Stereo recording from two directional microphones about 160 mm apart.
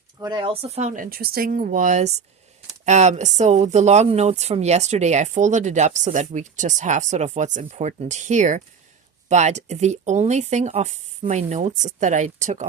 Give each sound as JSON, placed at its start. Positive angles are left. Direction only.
{"t": 0.2, "sound": "speech", "side_deg": -30}
{"t": 1.1, "sound": "speech", "side_deg": -70}